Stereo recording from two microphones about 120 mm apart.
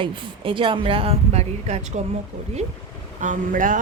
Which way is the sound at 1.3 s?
65° right (ahead or behind).